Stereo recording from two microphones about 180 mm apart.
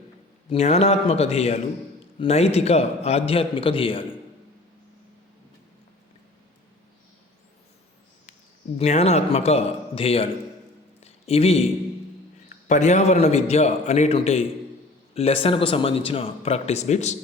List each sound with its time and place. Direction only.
0.5 s speech: 35° left (ahead or behind)
8.8 s speech: 35° left (ahead or behind)
11.0 s a sound: 35° left (ahead or behind)
12.6 s speech: 40° left (ahead or behind)